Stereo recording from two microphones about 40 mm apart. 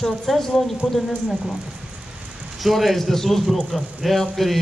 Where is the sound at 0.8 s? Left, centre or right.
Right.